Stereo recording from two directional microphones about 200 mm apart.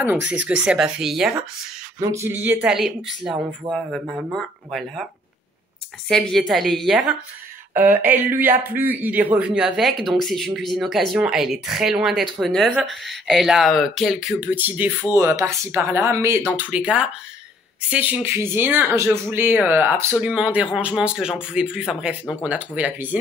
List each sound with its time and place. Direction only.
0.3 s speech: 5° right (ahead or behind)
2.0 s speech: 15° right (ahead or behind); by 5.0 s centre (ahead or behind)
6.0 s speech: 5° left (ahead or behind)